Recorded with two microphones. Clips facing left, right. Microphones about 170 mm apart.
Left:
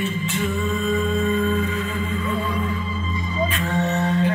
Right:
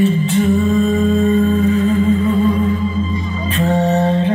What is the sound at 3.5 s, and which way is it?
Music, 35° right (ahead or behind).